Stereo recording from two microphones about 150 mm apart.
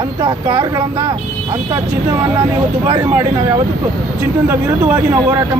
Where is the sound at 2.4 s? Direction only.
30° right (ahead or behind).